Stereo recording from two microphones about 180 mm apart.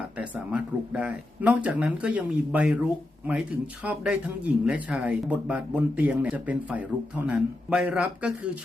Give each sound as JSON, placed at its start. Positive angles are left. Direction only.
{"t": 0.2, "sound": "speech", "side_deg": -5}